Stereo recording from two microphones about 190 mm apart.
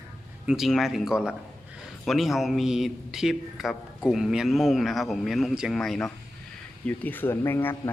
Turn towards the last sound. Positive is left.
turn(degrees=10)  # may be behind; listen again after turning